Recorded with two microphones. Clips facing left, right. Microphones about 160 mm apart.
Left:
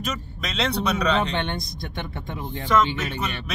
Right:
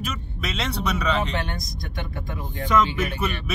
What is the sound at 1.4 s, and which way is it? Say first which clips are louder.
Speech: left 3 dB; 25° left (ahead or behind).